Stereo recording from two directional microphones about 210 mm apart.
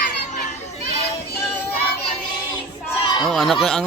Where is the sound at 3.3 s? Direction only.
Centre (ahead or behind).